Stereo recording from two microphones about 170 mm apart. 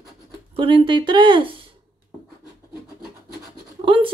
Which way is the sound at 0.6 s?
30° right (ahead or behind).